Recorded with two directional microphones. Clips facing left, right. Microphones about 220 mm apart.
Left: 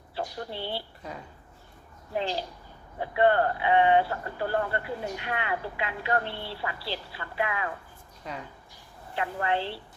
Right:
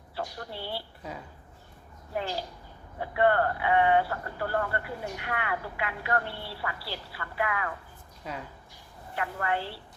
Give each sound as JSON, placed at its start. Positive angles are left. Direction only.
{"t": 0.2, "sound": "speech", "side_deg": 20}
{"t": 2.1, "sound": "speech", "side_deg": 25}
{"t": 8.2, "sound": "speech", "side_deg": -5}
{"t": 9.1, "sound": "speech", "side_deg": 25}